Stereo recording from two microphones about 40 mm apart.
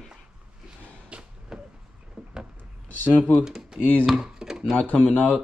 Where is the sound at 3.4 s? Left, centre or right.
Centre.